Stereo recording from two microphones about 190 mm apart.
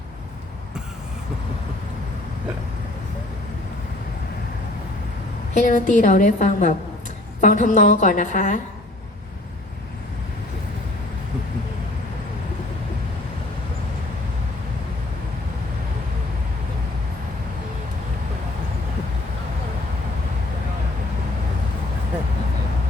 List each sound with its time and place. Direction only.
5.5 s a woman's voice: 40° left (ahead or behind)